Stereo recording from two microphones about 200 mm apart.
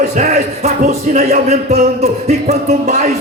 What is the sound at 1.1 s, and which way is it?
A man's voice, 35° right (ahead or behind).